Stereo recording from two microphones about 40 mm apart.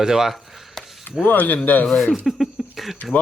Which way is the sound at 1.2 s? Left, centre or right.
Left.